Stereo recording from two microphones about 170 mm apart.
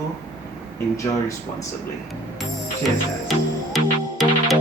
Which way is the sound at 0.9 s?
15° left (ahead or behind).